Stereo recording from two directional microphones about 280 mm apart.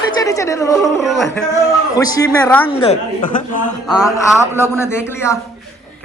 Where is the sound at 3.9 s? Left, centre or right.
Centre.